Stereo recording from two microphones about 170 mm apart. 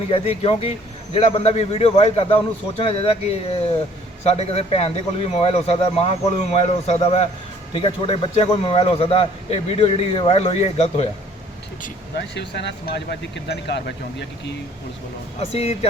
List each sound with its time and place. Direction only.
0.1 s a man's voice: 35° left (ahead or behind)
11.8 s speech: 75° left (ahead or behind)
15.4 s a man's voice: 35° left (ahead or behind)